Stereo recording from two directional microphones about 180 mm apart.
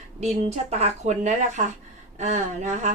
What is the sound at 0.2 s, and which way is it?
A woman's voice, 35° right (ahead or behind).